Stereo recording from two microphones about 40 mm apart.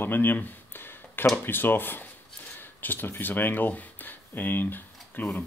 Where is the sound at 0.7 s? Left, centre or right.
Left.